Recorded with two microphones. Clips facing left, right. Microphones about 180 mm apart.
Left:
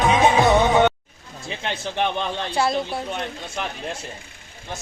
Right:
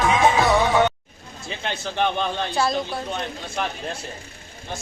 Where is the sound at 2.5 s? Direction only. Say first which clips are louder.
Left 2 dB; 25° left (ahead or behind).